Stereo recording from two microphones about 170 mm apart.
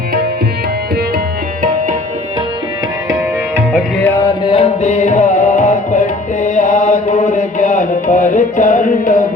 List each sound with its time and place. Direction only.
3.7 s tabla: 5° right (ahead or behind)
4.0 s music: 15° left (ahead or behind)
4.4 s music: 35° left (ahead or behind)